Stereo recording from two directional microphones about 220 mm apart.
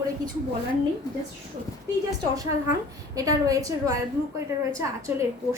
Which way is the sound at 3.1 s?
15° right (ahead or behind).